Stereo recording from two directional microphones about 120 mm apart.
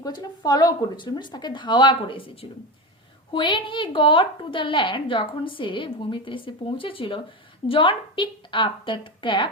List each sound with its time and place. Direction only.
0.0 s a woman's voice: 35° left (ahead or behind)